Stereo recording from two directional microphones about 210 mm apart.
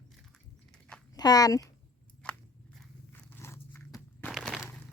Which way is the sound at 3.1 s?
10° left (ahead or behind).